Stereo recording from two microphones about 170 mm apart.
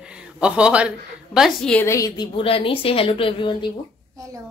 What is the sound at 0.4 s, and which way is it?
A woman's voice, 5° right (ahead or behind).